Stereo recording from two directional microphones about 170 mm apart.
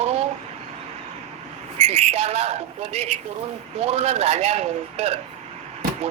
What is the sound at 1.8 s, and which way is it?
A man's voice, 40° right (ahead or behind).